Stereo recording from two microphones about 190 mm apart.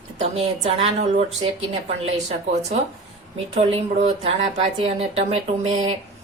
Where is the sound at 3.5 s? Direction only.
30° right (ahead or behind).